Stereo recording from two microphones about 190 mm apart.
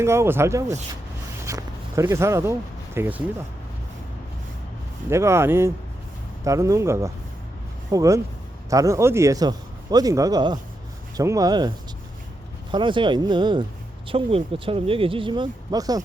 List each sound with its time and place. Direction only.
0.0 s speech: 15° right (ahead or behind)
5.0 s speech: 15° right (ahead or behind)
12.7 s speech: 25° right (ahead or behind)